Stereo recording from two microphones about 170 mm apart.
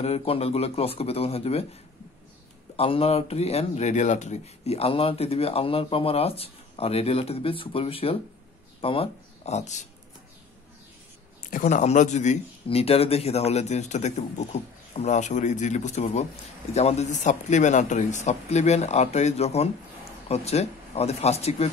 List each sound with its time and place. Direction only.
0.0 s speech: 35° left (ahead or behind)
2.7 s speech: 35° left (ahead or behind)
11.5 s speech: 45° left (ahead or behind)